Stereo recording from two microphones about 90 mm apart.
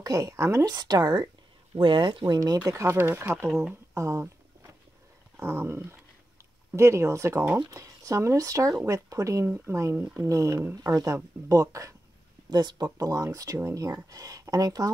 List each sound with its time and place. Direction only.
0.0 s speech: 35° right (ahead or behind)
0.7 s speech: 45° right (ahead or behind)
1.8 s speech: 70° right (ahead or behind)
2.2 s speech: 45° right (ahead or behind); by 3.4 s 25° right (ahead or behind)
3.9 s a sound: 35° right (ahead or behind)
6.7 s speech: 30° right (ahead or behind)
7.7 s speech: 40° right (ahead or behind)
9.9 s a sound: 20° right (ahead or behind)
10.2 s speech: 35° right (ahead or behind)
12.4 s speech: 50° right (ahead or behind)